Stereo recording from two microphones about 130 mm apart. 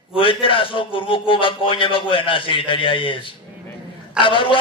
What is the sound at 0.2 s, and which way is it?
A man's voice, 40° left (ahead or behind).